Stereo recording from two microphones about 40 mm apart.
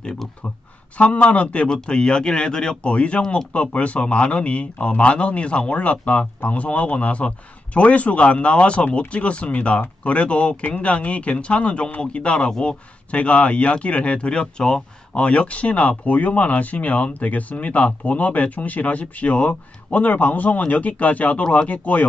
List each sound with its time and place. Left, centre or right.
0.9 s speech: left
1.7 s speech: left
13.1 s speech: left